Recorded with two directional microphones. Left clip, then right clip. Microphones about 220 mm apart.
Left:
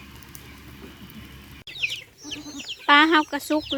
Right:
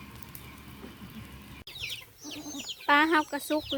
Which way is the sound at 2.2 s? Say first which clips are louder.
Left 3 dB; 40° right (ahead or behind).